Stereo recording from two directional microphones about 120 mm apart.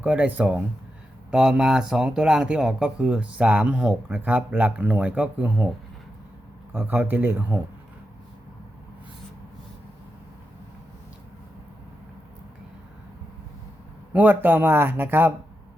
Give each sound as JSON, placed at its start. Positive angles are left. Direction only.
{"t": 0.0, "sound": "speech", "side_deg": -10}
{"t": 6.7, "sound": "speech", "side_deg": -15}
{"t": 14.1, "sound": "speech", "side_deg": -15}